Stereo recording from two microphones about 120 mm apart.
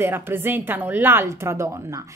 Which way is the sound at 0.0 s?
20° right (ahead or behind).